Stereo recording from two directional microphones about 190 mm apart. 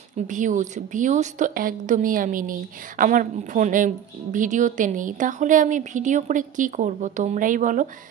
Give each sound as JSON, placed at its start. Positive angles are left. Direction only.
{"t": 0.3, "sound": "speech", "side_deg": -40}